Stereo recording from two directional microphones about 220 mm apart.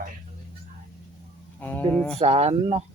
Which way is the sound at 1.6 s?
10° left (ahead or behind).